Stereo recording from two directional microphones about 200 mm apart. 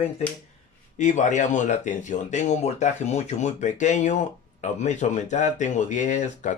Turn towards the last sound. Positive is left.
turn(degrees=40)  # may be behind; listen again after turning